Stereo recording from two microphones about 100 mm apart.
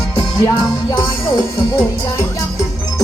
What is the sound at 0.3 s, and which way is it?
Music, 35° left (ahead or behind).